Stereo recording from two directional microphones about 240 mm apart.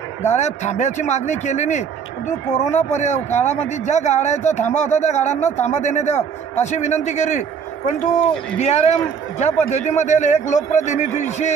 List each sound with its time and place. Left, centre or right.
0.3 s speech: left